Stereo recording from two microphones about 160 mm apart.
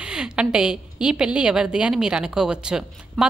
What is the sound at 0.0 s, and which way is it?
A woman's voice, 5° right (ahead or behind).